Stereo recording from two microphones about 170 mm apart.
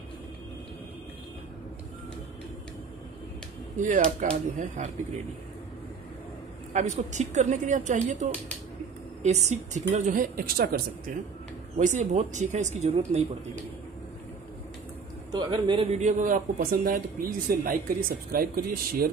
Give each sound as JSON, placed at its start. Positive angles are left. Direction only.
{"t": 3.7, "sound": "speech", "side_deg": -45}
{"t": 6.7, "sound": "speech", "side_deg": -45}
{"t": 11.8, "sound": "speech", "side_deg": -45}
{"t": 15.3, "sound": "speech", "side_deg": -25}